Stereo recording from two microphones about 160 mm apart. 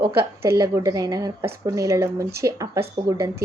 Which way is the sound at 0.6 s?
20° right (ahead or behind).